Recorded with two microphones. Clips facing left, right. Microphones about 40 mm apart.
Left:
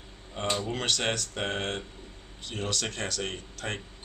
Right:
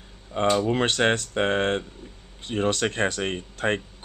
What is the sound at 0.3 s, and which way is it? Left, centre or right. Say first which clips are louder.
Speech: right 9 dB; right.